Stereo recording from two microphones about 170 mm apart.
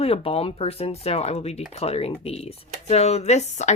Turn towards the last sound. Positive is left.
turn(degrees=40)  # may be behind; listen again after turning